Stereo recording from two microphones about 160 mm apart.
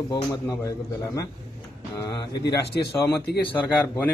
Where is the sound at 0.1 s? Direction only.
25° left (ahead or behind).